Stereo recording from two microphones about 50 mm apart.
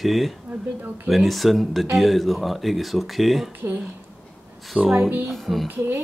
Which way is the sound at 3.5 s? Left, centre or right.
Right.